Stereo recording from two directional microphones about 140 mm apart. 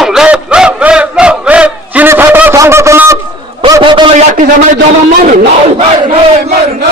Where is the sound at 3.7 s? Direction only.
35° right (ahead or behind).